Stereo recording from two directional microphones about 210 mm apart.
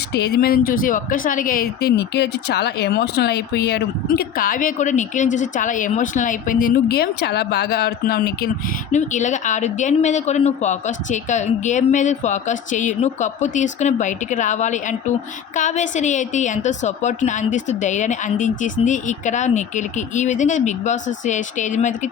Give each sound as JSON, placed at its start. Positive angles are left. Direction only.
{"t": 0.1, "sound": "speech", "side_deg": 50}
{"t": 8.9, "sound": "a woman's voice", "side_deg": 35}